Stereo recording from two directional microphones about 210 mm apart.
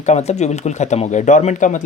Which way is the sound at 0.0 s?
30° left (ahead or behind).